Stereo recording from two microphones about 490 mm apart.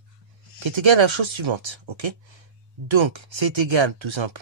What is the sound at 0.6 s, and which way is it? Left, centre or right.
Speech, right.